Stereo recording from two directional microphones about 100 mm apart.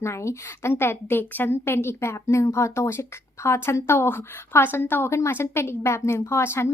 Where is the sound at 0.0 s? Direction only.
30° left (ahead or behind).